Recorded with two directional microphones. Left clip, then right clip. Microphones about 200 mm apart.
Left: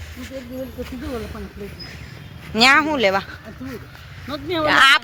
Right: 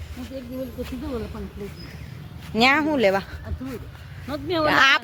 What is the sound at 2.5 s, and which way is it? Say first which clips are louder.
Speech: left 5 dB; 10° right (ahead or behind).